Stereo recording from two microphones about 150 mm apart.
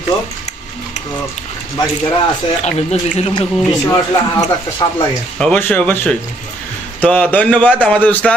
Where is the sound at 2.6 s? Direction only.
45° left (ahead or behind).